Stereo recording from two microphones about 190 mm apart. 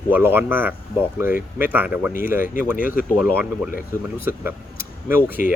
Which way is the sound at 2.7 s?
45° left (ahead or behind).